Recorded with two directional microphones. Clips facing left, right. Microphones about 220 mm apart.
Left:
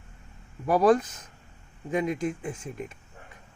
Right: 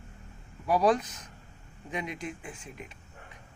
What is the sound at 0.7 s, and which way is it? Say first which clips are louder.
Speech: left 4 dB; 50° left (ahead or behind).